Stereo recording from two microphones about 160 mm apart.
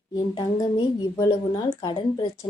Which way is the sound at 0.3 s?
25° left (ahead or behind).